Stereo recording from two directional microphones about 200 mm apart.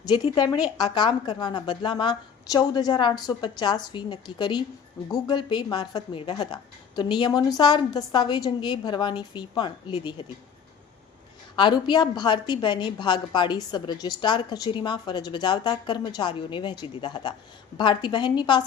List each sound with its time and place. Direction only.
0.0 s a woman's voice: 20° left (ahead or behind)
11.5 s a woman's voice: 20° left (ahead or behind)